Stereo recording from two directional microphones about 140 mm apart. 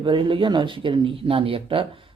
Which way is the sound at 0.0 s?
35° right (ahead or behind).